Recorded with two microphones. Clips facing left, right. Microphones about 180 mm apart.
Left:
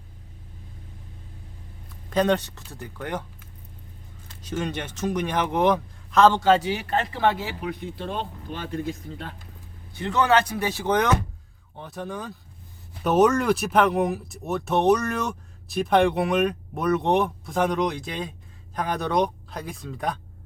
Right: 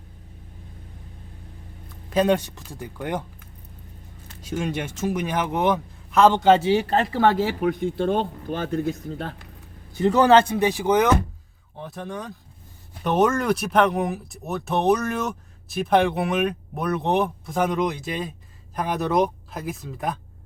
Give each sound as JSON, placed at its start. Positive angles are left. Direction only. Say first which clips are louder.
{"t": 2.0, "sound": "speech", "louder": "right 2 dB", "side_deg": -10}
{"t": 4.4, "sound": "a man's voice", "louder": "right 2 dB", "side_deg": -10}